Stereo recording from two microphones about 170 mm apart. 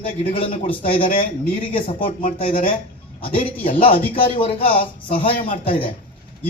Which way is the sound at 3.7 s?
30° left (ahead or behind).